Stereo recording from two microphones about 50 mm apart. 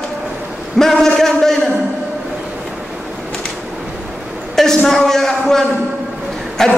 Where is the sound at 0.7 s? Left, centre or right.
Centre.